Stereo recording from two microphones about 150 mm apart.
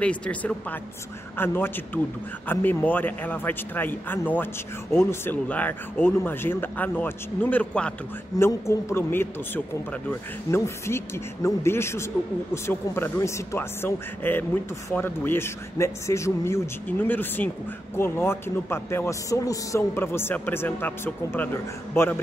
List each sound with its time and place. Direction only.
0.0 s a man's voice: 10° left (ahead or behind)
10.5 s a man's voice: 15° left (ahead or behind)